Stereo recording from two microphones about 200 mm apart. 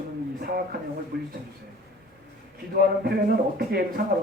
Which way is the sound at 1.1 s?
50° right (ahead or behind).